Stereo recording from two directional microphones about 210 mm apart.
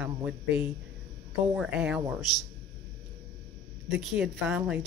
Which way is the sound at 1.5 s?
5° right (ahead or behind).